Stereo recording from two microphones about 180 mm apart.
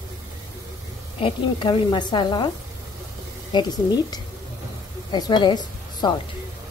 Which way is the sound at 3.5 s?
20° left (ahead or behind).